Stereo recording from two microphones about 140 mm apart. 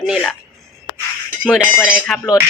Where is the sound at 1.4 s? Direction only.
Centre (ahead or behind).